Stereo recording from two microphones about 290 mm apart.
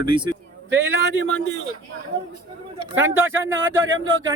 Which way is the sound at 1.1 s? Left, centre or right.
Right.